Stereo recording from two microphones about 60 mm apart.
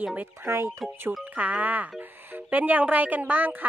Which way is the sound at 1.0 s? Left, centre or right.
Right.